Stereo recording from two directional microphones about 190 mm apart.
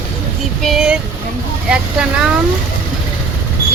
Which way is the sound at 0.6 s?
Centre (ahead or behind).